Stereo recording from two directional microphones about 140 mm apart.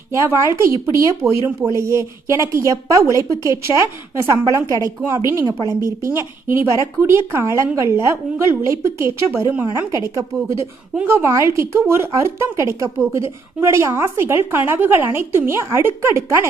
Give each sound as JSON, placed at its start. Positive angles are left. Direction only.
{"t": 0.1, "sound": "speech", "side_deg": -20}